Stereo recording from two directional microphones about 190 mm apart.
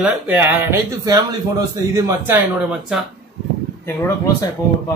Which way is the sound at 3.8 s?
15° left (ahead or behind).